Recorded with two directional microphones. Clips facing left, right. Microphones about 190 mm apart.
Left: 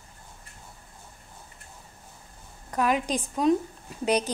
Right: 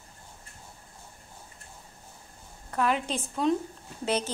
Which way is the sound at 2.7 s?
15° left (ahead or behind).